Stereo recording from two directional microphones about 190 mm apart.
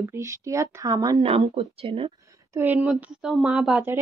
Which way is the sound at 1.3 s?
30° right (ahead or behind).